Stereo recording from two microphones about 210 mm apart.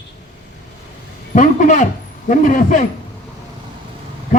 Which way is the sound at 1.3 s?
35° left (ahead or behind).